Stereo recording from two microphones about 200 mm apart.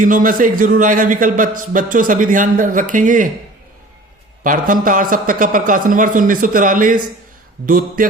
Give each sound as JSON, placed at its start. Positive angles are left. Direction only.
{"t": 0.0, "sound": "a man's voice", "side_deg": -45}
{"t": 4.4, "sound": "a man's voice", "side_deg": -45}